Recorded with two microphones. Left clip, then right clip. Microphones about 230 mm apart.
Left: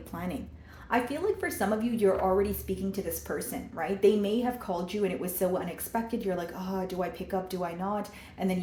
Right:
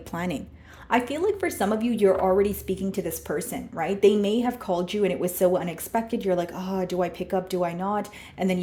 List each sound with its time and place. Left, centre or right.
0.1 s a woman's voice: right